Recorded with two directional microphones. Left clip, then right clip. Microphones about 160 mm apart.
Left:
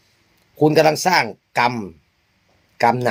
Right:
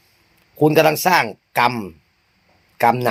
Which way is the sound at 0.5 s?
15° left (ahead or behind).